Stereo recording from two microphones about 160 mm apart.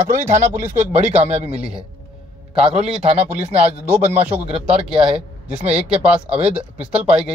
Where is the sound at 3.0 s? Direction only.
40° right (ahead or behind).